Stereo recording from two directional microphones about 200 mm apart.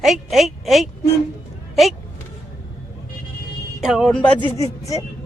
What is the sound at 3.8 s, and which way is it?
Speech, centre (ahead or behind).